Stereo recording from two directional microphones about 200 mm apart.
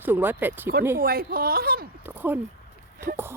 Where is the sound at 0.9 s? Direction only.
50° right (ahead or behind).